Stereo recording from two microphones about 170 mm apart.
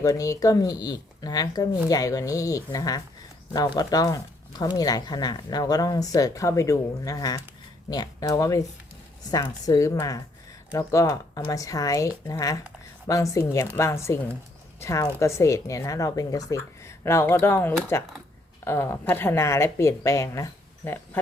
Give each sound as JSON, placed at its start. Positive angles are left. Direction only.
{"t": 0.0, "sound": "a woman's voice", "side_deg": 20}